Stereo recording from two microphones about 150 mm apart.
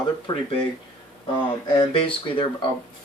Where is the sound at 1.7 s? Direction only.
35° left (ahead or behind).